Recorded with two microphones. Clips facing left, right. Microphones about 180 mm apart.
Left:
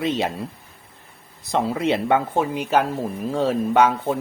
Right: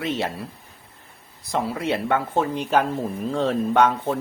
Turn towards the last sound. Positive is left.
turn(degrees=5)  # may be behind; listen again after turning